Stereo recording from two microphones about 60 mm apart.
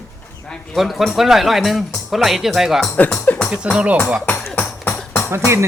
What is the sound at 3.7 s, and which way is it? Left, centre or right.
Speech, right.